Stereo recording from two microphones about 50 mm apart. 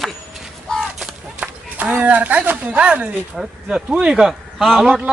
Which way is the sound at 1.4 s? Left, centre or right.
Right.